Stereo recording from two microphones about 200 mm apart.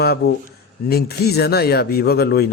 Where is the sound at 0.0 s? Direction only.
55° left (ahead or behind).